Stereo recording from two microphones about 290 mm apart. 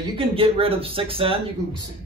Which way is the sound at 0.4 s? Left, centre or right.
Centre.